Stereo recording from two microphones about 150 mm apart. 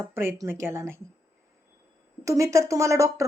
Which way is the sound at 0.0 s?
15° right (ahead or behind).